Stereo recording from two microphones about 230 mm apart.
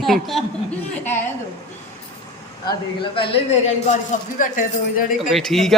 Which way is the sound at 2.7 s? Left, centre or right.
Left.